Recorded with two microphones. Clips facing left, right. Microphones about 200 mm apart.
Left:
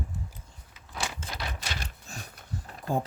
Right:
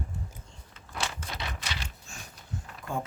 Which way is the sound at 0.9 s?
5° left (ahead or behind).